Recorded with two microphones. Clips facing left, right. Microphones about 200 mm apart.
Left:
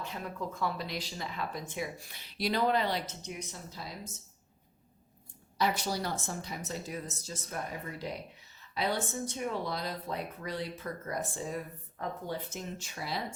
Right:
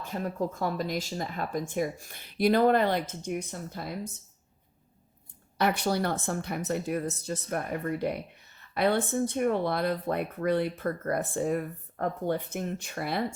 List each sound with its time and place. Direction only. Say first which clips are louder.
0.0 s speech: right 7 dB; 45° right (ahead or behind)
5.5 s speech: right 5 dB; 60° right (ahead or behind)